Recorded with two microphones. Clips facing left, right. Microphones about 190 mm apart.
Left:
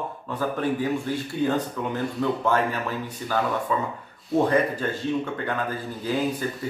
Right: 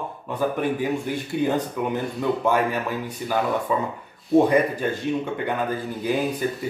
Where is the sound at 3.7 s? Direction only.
15° right (ahead or behind).